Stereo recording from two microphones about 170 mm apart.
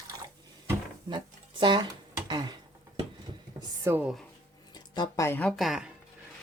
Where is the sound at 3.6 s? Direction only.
15° right (ahead or behind).